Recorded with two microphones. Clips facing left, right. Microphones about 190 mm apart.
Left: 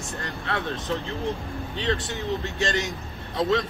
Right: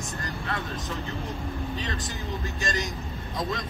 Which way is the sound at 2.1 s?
65° left (ahead or behind).